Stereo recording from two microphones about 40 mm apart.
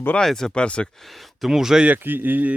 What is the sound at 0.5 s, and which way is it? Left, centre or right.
Speech, left.